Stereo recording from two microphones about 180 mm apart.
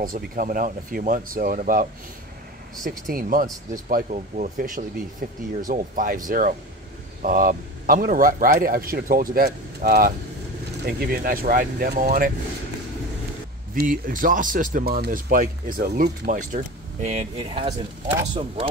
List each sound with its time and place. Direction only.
0.0 s a man's voice: 50° right (ahead or behind)
13.7 s a man's voice: 50° right (ahead or behind); by 18.7 s 30° right (ahead or behind)